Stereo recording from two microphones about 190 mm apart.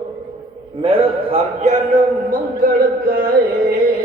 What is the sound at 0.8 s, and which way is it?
A man's voice, 30° right (ahead or behind).